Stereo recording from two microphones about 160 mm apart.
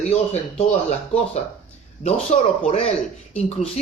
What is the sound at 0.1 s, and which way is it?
Speech, 45° left (ahead or behind).